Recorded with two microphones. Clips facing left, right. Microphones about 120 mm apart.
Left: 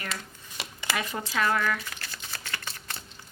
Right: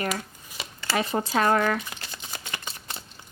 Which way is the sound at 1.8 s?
20° right (ahead or behind).